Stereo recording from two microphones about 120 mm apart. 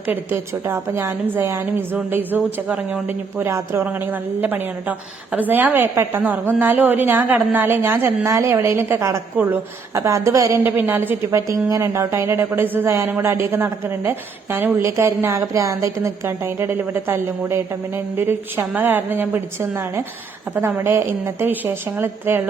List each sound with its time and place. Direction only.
0.1 s a woman's voice: 20° right (ahead or behind)